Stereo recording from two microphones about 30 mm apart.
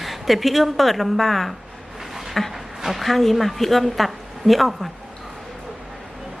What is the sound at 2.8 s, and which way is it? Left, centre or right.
Speech, centre.